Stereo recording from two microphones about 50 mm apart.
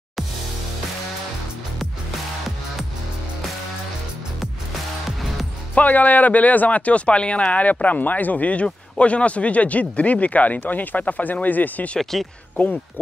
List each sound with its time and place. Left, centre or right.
5.8 s speech: left
12.0 s speech: centre